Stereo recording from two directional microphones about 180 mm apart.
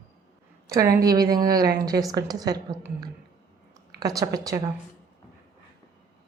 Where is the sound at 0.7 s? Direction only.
20° right (ahead or behind).